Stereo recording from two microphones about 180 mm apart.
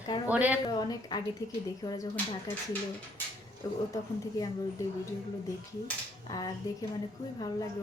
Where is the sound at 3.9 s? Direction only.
20° left (ahead or behind).